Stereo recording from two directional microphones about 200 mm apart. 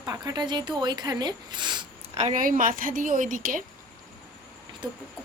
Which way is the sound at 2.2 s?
40° right (ahead or behind).